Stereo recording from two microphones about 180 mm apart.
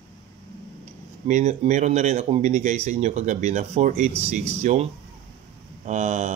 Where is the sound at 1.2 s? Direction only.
40° right (ahead or behind).